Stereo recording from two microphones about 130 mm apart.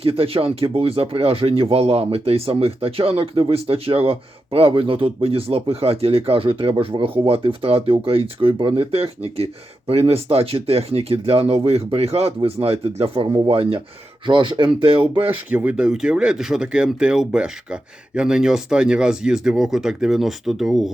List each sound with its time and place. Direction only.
0.0 s speech: 45° right (ahead or behind)
15.3 s speech: 15° right (ahead or behind)